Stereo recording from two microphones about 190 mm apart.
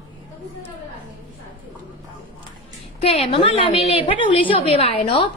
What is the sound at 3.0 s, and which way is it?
A woman's voice, 30° left (ahead or behind).